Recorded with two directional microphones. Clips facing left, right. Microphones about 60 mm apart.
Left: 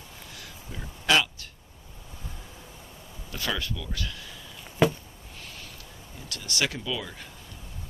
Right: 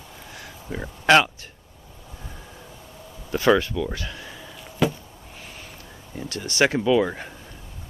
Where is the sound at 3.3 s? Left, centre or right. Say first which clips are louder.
Right 13 dB; right.